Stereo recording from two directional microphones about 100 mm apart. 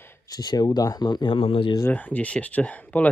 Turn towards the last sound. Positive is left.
turn(degrees=15)  # may be behind; listen again after turning